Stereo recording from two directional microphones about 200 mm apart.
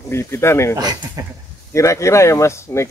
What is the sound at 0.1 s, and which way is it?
Speech, 10° left (ahead or behind).